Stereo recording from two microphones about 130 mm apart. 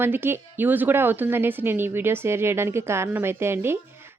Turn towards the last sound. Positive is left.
turn(degrees=-20)  # may be behind; listen again after turning